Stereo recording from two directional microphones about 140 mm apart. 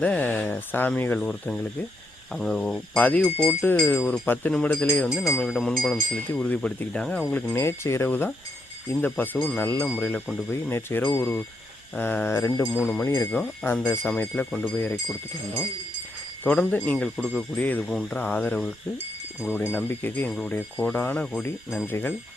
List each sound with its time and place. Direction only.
0.0 s speech: 10° left (ahead or behind)
5.0 s speech: 5° right (ahead or behind); by 13.2 s 20° left (ahead or behind)
13.3 s speech: 10° left (ahead or behind)
16.4 s speech: 10° left (ahead or behind)
17.6 s speech: 10° left (ahead or behind)